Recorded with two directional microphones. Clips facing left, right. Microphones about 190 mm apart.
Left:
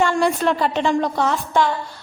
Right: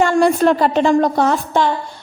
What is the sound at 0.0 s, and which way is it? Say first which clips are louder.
A woman's voice: right 5 dB; 45° right (ahead or behind).